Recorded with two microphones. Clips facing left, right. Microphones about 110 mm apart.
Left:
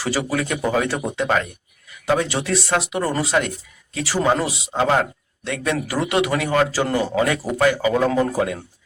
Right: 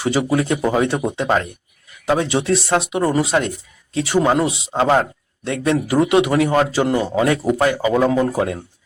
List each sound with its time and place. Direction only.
0.0 s speech: 20° right (ahead or behind)
6.8 s speech: 10° right (ahead or behind)
7.3 s speech: 25° right (ahead or behind)